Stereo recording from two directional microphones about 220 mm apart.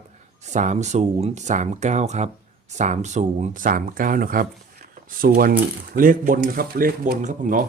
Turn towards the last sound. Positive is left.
turn(degrees=-35)  # may be behind; listen again after turning